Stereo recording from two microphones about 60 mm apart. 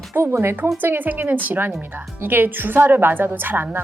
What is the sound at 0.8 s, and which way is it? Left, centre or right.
A woman's voice, right.